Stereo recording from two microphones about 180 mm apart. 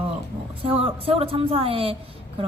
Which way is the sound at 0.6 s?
30° right (ahead or behind).